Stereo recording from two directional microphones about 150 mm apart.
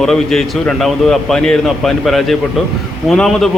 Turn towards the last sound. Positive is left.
turn(degrees=0)  # may be behind; listen again after turning